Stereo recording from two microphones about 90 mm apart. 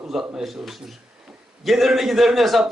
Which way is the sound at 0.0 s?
5° right (ahead or behind).